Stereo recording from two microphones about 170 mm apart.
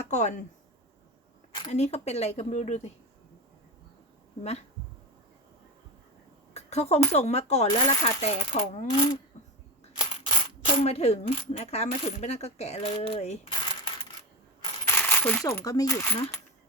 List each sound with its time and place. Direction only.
0.0 s speech: 45° left (ahead or behind)
1.7 s speech: 40° left (ahead or behind)
6.5 s a sound: 40° left (ahead or behind)
7.1 s speech: 40° left (ahead or behind)
8.9 s speech: 25° left (ahead or behind)
14.8 s coin: 10° left (ahead or behind)